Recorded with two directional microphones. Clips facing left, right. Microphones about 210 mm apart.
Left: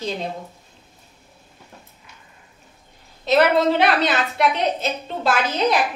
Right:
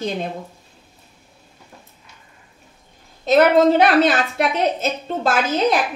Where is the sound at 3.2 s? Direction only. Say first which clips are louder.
Right 3 dB; 45° right (ahead or behind).